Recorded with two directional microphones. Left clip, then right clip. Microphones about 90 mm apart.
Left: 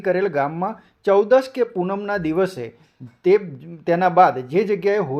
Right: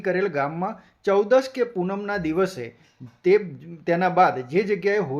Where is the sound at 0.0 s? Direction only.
20° left (ahead or behind).